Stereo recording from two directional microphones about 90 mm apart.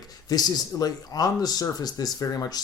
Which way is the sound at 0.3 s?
45° left (ahead or behind).